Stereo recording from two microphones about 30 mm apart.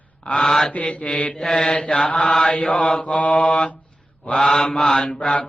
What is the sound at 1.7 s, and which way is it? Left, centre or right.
Mantra, left.